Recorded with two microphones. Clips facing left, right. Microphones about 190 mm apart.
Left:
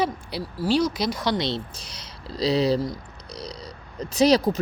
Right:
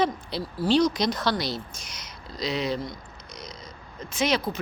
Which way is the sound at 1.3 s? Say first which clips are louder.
Left 4 dB; 25° left (ahead or behind).